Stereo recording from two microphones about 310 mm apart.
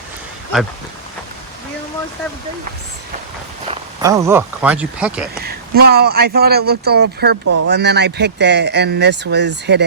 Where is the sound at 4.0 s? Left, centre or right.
Centre.